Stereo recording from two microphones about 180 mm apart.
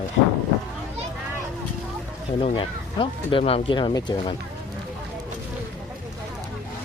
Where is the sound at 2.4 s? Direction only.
30° left (ahead or behind).